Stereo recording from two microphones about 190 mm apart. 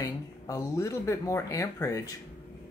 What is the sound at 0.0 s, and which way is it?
Speech, 20° left (ahead or behind).